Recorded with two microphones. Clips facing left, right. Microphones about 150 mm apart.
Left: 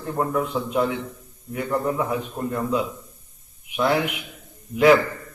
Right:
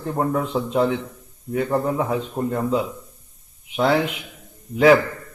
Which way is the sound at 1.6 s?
25° right (ahead or behind).